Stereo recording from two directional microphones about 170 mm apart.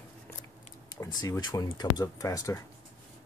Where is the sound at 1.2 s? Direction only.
20° left (ahead or behind).